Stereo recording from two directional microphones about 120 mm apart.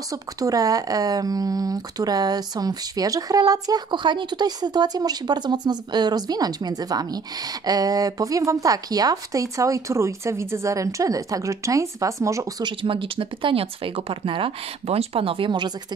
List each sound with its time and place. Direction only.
0.1 s speech: 30° right (ahead or behind)
12.6 s speech: 45° right (ahead or behind)